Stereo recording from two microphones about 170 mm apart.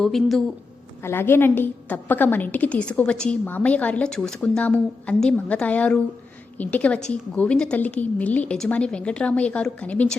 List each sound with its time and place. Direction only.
0.0 s speech: centre (ahead or behind)
1.0 s a woman's voice: 15° left (ahead or behind)